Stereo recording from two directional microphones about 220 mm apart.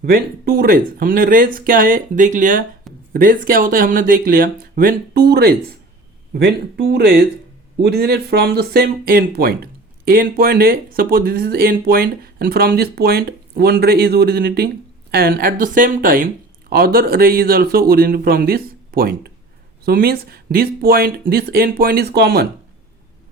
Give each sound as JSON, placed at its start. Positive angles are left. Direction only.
{"t": 0.0, "sound": "speech", "side_deg": -45}